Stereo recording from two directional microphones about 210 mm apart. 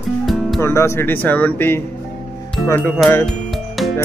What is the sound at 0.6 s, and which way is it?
Speech, 15° left (ahead or behind).